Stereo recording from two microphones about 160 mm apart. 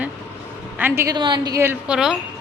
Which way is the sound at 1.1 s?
25° right (ahead or behind).